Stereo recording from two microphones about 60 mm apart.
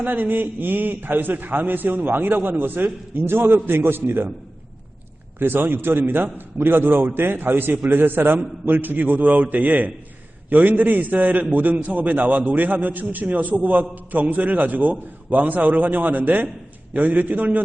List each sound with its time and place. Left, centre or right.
0.0 s a man's voice: right
5.4 s a man's voice: right